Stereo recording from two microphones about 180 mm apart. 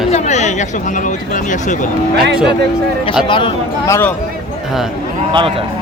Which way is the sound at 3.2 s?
25° left (ahead or behind).